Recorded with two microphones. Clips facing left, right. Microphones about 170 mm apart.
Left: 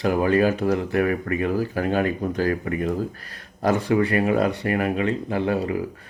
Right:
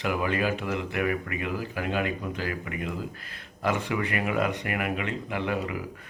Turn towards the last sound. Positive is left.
turn(degrees=35)  # may be behind; listen again after turning